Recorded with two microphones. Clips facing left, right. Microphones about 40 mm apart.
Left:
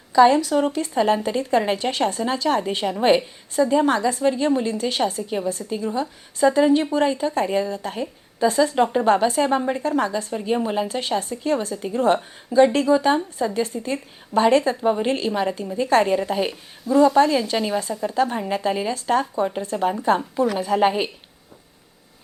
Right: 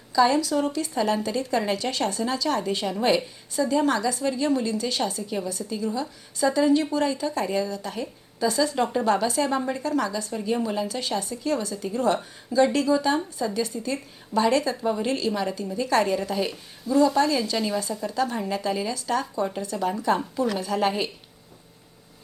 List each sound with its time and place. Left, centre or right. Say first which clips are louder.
0.1 s a woman's voice: left 6 dB; left
20.4 s speech: left 5 dB; centre